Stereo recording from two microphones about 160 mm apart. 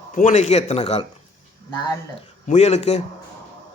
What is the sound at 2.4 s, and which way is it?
Speech, 45° left (ahead or behind).